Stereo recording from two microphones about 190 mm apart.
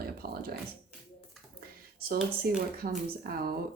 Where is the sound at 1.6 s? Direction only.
50° right (ahead or behind).